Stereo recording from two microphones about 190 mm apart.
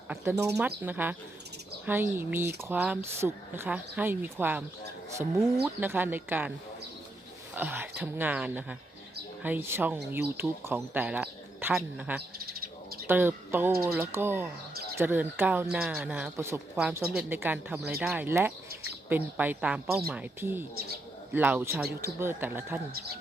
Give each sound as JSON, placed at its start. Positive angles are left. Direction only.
{"t": 0.1, "sound": "speech", "side_deg": -15}
{"t": 5.6, "sound": "speech", "side_deg": -10}
{"t": 7.5, "sound": "speech", "side_deg": -10}
{"t": 12.5, "sound": "bird", "side_deg": -50}
{"t": 13.1, "sound": "speech", "side_deg": -10}